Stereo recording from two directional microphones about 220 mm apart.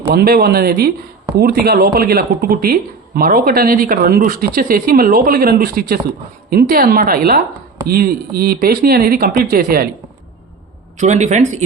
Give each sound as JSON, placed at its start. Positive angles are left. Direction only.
{"t": 0.1, "sound": "speech", "side_deg": -45}
{"t": 10.9, "sound": "speech", "side_deg": -30}